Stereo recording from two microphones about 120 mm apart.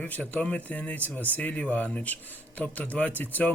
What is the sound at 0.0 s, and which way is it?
A man's voice, 15° left (ahead or behind).